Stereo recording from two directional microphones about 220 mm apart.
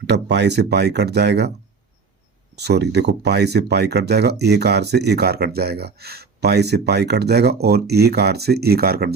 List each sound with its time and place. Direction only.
0.1 s speech: 50° right (ahead or behind)
2.6 s speech: 50° right (ahead or behind)